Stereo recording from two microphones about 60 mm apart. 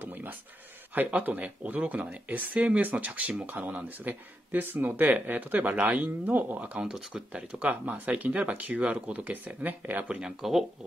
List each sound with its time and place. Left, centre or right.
0.0 s a sound: right
0.9 s speech: right
10.2 s speech: centre